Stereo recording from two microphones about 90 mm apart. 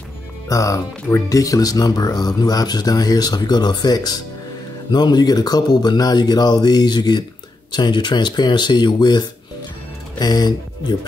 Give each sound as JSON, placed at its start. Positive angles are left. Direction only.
{"t": 0.5, "sound": "speech", "side_deg": 35}